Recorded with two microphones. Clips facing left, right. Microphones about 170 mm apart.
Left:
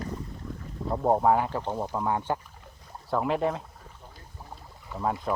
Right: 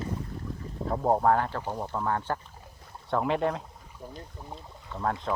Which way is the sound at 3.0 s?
Centre (ahead or behind).